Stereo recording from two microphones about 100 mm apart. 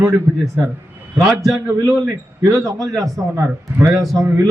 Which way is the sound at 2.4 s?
30° right (ahead or behind).